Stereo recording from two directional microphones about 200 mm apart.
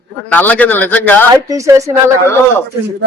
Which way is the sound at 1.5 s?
15° right (ahead or behind).